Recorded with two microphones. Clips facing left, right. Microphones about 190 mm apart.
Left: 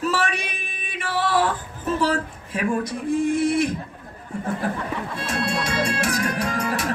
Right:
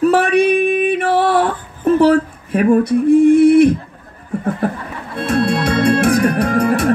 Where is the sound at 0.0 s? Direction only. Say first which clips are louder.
Right 13 dB; 60° right (ahead or behind).